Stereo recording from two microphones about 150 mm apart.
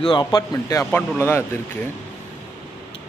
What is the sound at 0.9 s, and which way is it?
Speech, 15° left (ahead or behind).